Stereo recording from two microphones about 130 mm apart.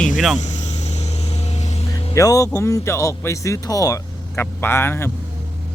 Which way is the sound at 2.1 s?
25° left (ahead or behind).